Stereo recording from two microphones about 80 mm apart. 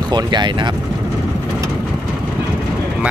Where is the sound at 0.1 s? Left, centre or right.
Right.